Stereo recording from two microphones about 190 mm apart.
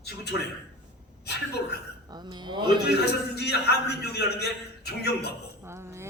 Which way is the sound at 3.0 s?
60° left (ahead or behind).